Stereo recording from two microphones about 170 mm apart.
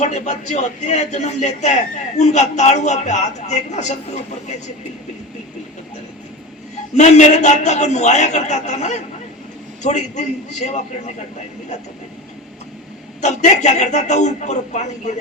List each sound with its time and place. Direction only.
0.0 s a man's voice: 45° left (ahead or behind)
6.9 s a man's voice: 45° left (ahead or behind)
13.2 s a man's voice: 45° left (ahead or behind)